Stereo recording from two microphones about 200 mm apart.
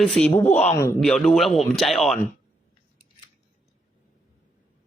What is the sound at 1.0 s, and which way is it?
Speech, centre (ahead or behind).